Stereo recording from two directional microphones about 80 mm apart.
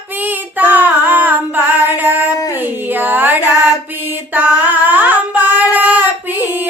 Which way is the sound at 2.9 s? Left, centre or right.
Right.